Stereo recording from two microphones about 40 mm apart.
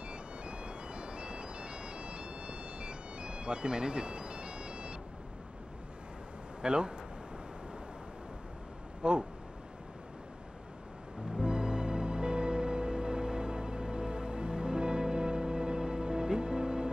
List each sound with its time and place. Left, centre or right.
0.1 s ice cream truck: right
6.6 s speech: right
9.0 s speech: right
11.3 s music: centre